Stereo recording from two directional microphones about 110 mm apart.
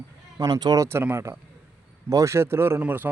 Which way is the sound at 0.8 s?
20° right (ahead or behind).